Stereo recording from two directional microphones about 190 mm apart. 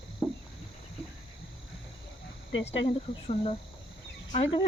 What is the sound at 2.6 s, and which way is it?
Speech, 30° left (ahead or behind).